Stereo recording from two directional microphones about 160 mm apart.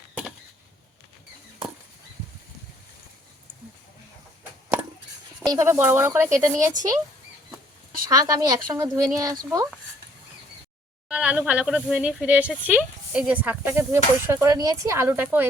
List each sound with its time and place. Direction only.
0.1 s chop: 5° right (ahead or behind)
5.5 s speech: 15° right (ahead or behind)
8.1 s a woman's voice: 25° right (ahead or behind)
11.1 s speech: 10° right (ahead or behind)